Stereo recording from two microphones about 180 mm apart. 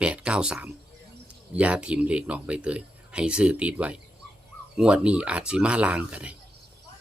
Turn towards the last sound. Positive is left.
turn(degrees=-5)  # may be behind; listen again after turning